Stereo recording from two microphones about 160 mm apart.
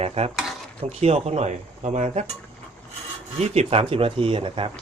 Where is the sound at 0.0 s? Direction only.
40° right (ahead or behind).